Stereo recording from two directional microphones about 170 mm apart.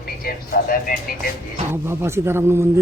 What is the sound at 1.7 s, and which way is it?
Speech, 15° right (ahead or behind).